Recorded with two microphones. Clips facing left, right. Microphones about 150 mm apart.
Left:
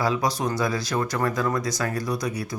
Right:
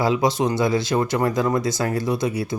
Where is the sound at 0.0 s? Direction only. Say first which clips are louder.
Right 5 dB; 25° right (ahead or behind).